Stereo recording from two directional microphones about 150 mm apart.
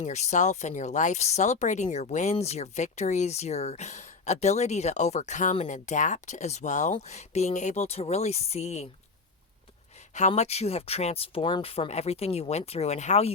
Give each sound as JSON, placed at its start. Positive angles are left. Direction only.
{"t": 0.0, "sound": "speech", "side_deg": 50}
{"t": 10.2, "sound": "speech", "side_deg": 50}